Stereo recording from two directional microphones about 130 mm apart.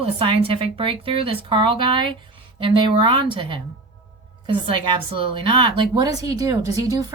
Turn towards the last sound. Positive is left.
turn(degrees=-25)  # may be behind; listen again after turning